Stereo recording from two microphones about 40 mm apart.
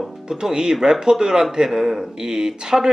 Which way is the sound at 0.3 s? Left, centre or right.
Centre.